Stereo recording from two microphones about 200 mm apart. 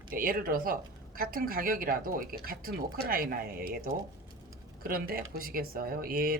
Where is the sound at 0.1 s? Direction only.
45° right (ahead or behind).